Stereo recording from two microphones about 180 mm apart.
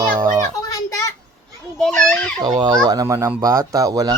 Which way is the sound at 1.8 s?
5° left (ahead or behind).